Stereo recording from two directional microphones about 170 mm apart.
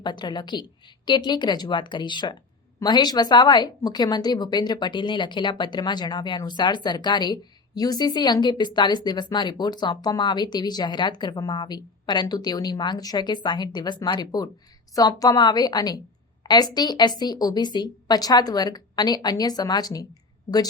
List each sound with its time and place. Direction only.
0.0 s speech: 25° left (ahead or behind)